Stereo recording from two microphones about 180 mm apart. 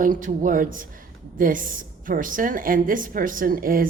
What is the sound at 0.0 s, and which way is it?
Speech, 45° right (ahead or behind).